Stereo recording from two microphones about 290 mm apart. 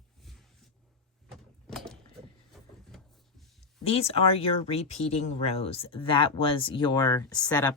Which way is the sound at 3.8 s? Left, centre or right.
Centre.